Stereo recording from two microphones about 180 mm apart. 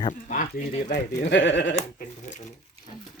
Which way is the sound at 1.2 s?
80° left.